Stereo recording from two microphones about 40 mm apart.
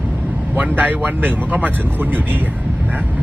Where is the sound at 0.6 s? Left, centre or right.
Right.